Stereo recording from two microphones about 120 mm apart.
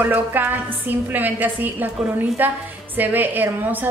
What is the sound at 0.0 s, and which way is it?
A woman's voice, 15° right (ahead or behind).